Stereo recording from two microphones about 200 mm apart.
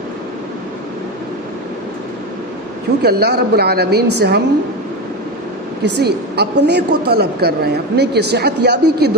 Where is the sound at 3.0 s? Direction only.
55° right (ahead or behind).